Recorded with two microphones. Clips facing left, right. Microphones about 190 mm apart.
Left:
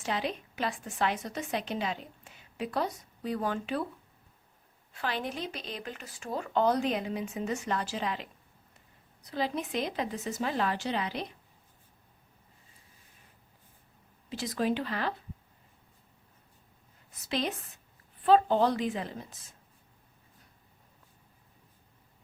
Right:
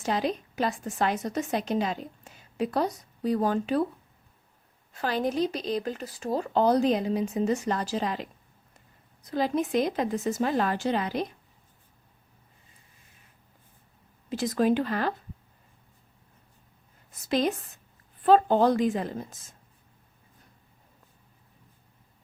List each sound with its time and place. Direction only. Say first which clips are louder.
0.0 s a woman's voice: right 5 dB; 40° right (ahead or behind)
4.9 s a woman's voice: right 8 dB; 40° right (ahead or behind)
14.3 s speech: right 6 dB; 50° right (ahead or behind)
17.2 s speech: right 7 dB; 45° right (ahead or behind)